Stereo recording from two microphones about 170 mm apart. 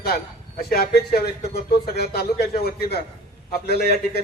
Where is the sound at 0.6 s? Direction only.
65° left (ahead or behind).